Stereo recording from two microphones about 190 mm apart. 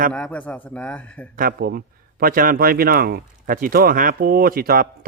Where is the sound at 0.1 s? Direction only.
5° left (ahead or behind).